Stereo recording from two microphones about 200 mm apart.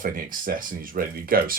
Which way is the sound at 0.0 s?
45° right (ahead or behind).